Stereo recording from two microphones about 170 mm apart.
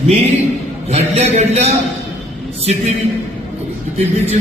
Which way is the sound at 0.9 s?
40° right (ahead or behind).